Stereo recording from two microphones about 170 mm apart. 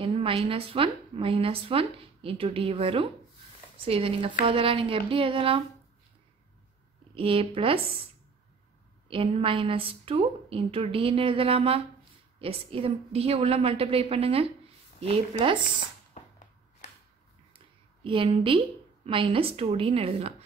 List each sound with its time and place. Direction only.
0.0 s speech: 35° right (ahead or behind)
7.2 s speech: 30° right (ahead or behind)
9.4 s speech: 30° right (ahead or behind)
18.0 s speech: 30° right (ahead or behind)